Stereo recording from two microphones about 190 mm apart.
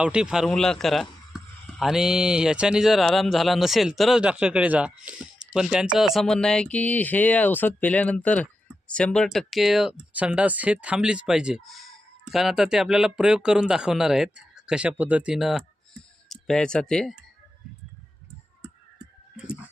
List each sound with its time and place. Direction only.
0.0 s speech: 5° right (ahead or behind)